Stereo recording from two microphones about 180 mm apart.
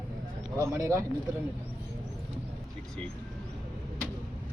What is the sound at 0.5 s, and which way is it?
Speech, 15° right (ahead or behind).